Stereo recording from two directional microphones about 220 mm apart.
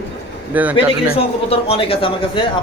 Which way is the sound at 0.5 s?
5° right (ahead or behind).